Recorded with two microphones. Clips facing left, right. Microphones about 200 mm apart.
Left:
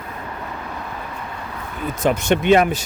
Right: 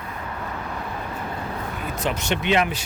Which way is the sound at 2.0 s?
50° left (ahead or behind).